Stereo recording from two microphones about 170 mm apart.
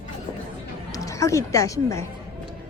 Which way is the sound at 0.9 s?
20° left (ahead or behind).